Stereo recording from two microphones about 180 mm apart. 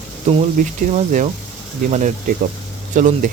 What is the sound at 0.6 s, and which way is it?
Speech, 50° right (ahead or behind).